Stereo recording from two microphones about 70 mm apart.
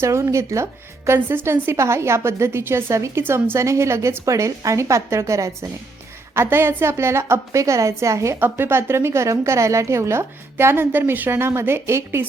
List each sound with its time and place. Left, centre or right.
0.0 s a woman's voice: right
6.3 s a woman's voice: right
8.4 s a woman's voice: right